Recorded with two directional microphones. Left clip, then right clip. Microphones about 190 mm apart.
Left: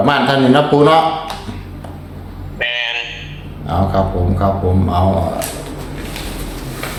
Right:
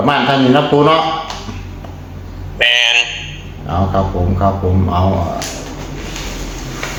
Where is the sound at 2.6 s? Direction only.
25° right (ahead or behind).